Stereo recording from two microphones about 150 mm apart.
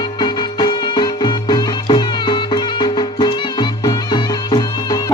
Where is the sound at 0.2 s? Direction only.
30° left (ahead or behind).